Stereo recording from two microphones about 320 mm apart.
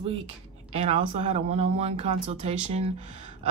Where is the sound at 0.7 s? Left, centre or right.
Centre.